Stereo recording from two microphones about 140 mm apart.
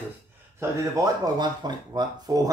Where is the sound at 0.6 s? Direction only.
25° right (ahead or behind).